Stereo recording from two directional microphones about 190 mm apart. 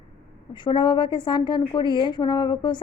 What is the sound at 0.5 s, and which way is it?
A woman's voice, 25° left (ahead or behind).